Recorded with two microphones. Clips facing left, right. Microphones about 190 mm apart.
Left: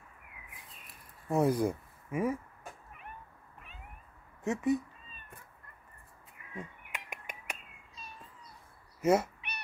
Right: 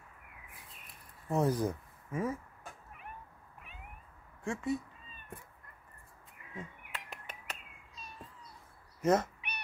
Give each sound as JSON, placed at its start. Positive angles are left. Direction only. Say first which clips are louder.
{"t": 1.3, "sound": "speech", "louder": "left 3 dB", "side_deg": 10}
{"t": 4.5, "sound": "speech", "louder": "left 5 dB", "side_deg": 20}
{"t": 6.5, "sound": "bird", "louder": "left 1 dB", "side_deg": 15}
{"t": 9.0, "sound": "speech", "louder": "left 2 dB", "side_deg": 10}